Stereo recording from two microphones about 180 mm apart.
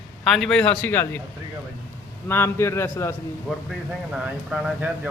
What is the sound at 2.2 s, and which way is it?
Speech, 15° left (ahead or behind).